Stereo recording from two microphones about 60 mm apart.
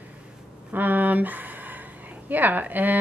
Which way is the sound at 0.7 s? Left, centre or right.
Right.